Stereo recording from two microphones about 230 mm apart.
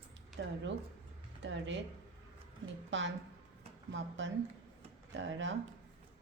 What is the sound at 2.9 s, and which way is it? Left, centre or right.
Speech, right.